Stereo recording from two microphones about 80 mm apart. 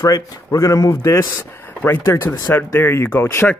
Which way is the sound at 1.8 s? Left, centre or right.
Left.